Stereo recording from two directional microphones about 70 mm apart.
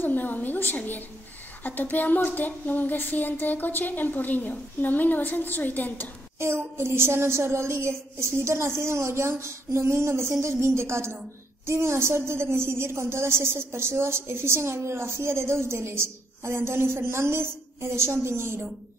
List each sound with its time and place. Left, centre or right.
0.0 s speech: left
6.4 s a woman's voice: right